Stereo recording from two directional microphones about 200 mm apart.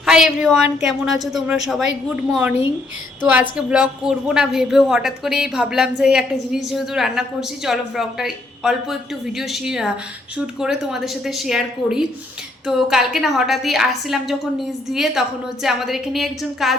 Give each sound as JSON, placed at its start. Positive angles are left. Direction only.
{"t": 0.0, "sound": "a woman's voice", "side_deg": 0}